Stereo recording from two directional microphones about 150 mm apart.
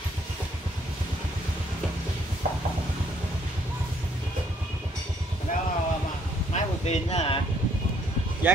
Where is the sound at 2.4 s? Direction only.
60° right (ahead or behind).